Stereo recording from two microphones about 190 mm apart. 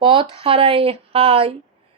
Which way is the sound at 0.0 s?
25° right (ahead or behind).